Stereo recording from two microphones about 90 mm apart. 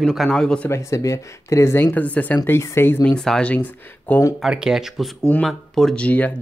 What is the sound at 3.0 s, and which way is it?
Speech, 10° left (ahead or behind).